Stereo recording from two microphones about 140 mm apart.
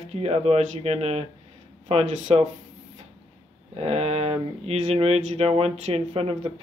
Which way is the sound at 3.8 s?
45° right (ahead or behind).